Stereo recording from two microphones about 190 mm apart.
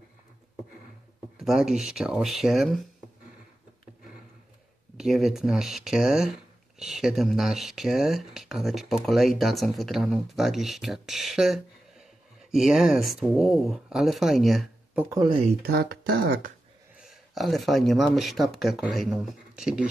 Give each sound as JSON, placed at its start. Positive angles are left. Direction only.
{"t": 1.4, "sound": "speech", "side_deg": 0}
{"t": 4.9, "sound": "speech", "side_deg": 0}
{"t": 15.0, "sound": "speech", "side_deg": -20}
{"t": 15.6, "sound": "speech", "side_deg": -55}
{"t": 16.9, "sound": "speech", "side_deg": 0}